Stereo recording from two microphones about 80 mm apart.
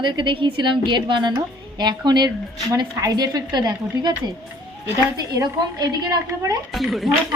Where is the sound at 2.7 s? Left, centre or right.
Right.